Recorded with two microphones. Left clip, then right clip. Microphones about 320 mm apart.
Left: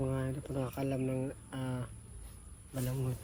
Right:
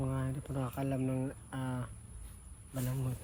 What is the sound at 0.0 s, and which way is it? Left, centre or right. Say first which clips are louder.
Speech: left 3 dB; centre.